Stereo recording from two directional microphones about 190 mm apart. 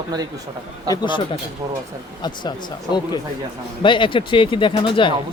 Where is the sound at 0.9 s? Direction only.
25° left (ahead or behind).